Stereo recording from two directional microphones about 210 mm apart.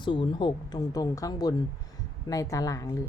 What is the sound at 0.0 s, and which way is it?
A woman's voice, 20° left (ahead or behind).